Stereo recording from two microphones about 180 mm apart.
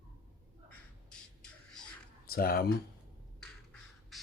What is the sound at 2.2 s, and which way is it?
Speech, 55° left (ahead or behind).